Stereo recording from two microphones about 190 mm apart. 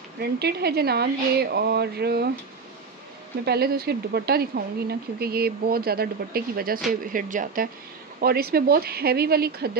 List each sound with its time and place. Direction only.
0.2 s speech: 60° right (ahead or behind)
3.4 s speech: 55° right (ahead or behind)